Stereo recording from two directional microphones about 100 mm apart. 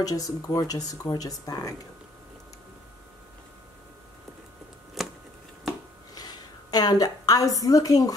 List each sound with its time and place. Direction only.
0.0 s speech: 35° left (ahead or behind)
5.0 s a sound: centre (ahead or behind)
6.1 s a woman's voice: 40° left (ahead or behind)